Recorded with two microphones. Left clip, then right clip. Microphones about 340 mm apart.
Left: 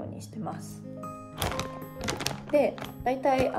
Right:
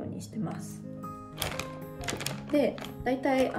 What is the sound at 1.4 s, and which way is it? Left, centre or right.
Music, left.